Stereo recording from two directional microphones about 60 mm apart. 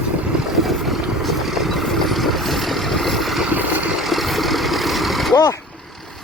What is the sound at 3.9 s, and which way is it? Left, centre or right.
Vehicle, centre.